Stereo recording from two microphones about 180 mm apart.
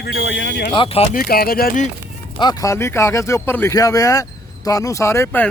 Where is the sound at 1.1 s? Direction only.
55° left (ahead or behind).